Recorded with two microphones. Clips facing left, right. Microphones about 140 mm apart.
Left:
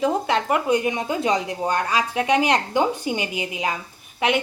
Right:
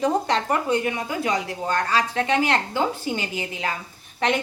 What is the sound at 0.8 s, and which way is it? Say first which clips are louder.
A woman's voice: left 2 dB; 20° left (ahead or behind).